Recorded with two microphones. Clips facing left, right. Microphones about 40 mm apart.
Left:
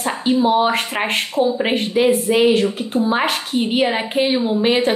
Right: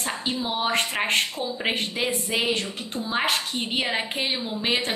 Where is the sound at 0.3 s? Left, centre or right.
Centre.